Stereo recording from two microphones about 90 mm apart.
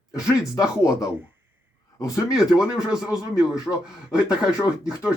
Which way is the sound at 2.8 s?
10° right (ahead or behind).